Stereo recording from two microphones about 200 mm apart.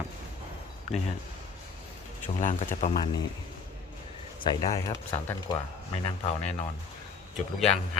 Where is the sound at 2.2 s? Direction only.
40° left (ahead or behind).